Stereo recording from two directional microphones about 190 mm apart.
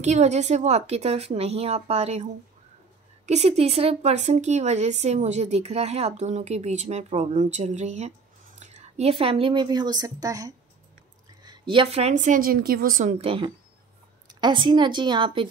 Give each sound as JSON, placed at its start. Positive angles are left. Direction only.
{"t": 0.0, "sound": "speech", "side_deg": -35}
{"t": 3.3, "sound": "a woman's voice", "side_deg": -35}
{"t": 13.2, "sound": "a woman's voice", "side_deg": -30}